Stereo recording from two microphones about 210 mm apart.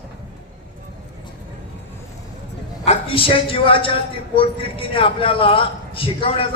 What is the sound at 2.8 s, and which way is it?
A man's voice, 25° left (ahead or behind).